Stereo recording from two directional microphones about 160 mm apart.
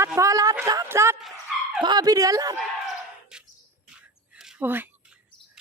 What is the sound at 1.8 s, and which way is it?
Speech, 25° right (ahead or behind).